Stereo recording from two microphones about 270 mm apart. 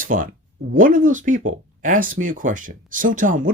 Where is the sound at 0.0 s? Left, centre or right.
Right.